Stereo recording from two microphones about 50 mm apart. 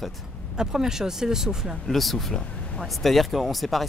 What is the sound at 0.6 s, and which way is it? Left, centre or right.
Speech, centre.